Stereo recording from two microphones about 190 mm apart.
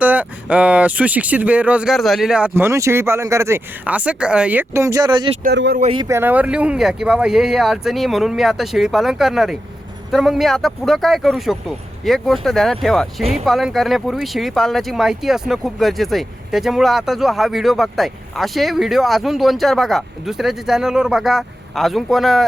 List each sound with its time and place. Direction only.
0.0 s speech: 10° right (ahead or behind); by 5.4 s 25° right (ahead or behind)
5.4 s speech: 60° right (ahead or behind)
5.8 s speech: 30° right (ahead or behind)
6.1 s speech: 10° right (ahead or behind)